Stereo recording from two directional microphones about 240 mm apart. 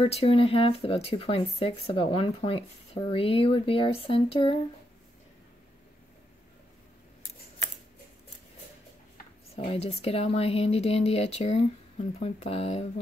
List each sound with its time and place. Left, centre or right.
0.0 s speech: left
9.7 s speech: left